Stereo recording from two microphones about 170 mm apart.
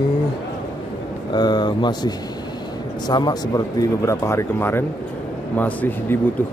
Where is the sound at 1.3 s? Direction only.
25° left (ahead or behind).